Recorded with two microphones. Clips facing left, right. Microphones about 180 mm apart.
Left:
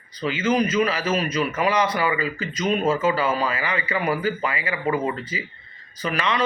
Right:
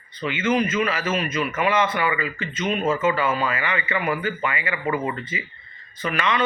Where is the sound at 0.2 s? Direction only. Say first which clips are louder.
Left 1 dB; 35° left (ahead or behind).